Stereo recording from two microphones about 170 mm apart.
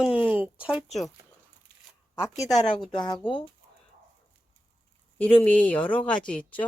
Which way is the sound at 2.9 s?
25° left (ahead or behind).